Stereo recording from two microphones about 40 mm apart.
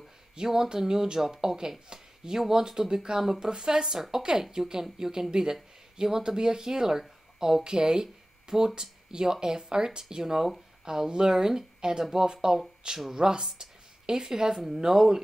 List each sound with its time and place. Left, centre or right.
0.4 s speech: centre